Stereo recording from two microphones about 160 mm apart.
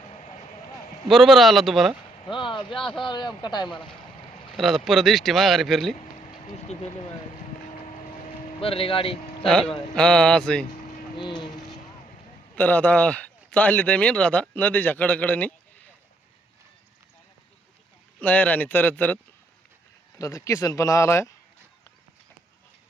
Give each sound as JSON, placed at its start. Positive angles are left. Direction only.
{"t": 1.0, "sound": "speech", "side_deg": 0}
{"t": 2.2, "sound": "speech", "side_deg": 30}
{"t": 2.7, "sound": "speech", "side_deg": 0}
{"t": 3.0, "sound": "speech", "side_deg": 30}
{"t": 4.5, "sound": "speech", "side_deg": 0}
{"t": 6.7, "sound": "speech", "side_deg": 45}
{"t": 8.6, "sound": "speech", "side_deg": 35}
{"t": 9.5, "sound": "speech", "side_deg": 5}
{"t": 12.5, "sound": "speech", "side_deg": 10}
{"t": 18.2, "sound": "speech", "side_deg": 10}